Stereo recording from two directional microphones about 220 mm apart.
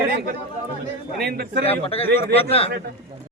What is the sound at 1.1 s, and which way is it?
Speech, 45° right (ahead or behind).